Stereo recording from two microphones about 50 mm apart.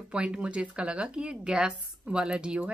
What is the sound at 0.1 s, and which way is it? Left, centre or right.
Speech, right.